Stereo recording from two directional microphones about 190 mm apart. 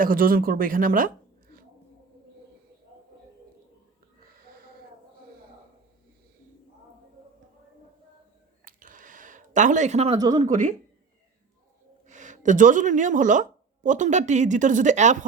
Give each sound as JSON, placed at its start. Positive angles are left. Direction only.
{"t": 0.0, "sound": "speech", "side_deg": -50}
{"t": 8.6, "sound": "a sound", "side_deg": -45}
{"t": 10.2, "sound": "speech", "side_deg": -20}
{"t": 10.4, "sound": "speech", "side_deg": -45}
{"t": 12.0, "sound": "speech", "side_deg": -40}